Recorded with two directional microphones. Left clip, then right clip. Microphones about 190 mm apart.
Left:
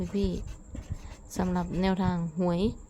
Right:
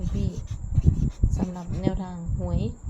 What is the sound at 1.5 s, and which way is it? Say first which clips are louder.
Speech: left 4 dB; 35° left (ahead or behind).